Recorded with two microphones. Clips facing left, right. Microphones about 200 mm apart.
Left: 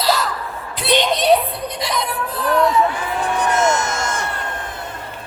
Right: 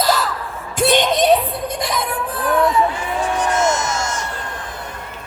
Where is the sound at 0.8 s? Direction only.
50° right (ahead or behind).